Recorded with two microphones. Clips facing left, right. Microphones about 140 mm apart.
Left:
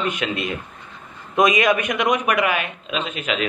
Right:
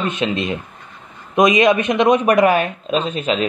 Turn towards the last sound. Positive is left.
turn(degrees=-30)  # may be behind; listen again after turning